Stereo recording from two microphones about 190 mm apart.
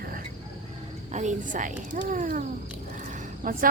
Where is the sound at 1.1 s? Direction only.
40° right (ahead or behind).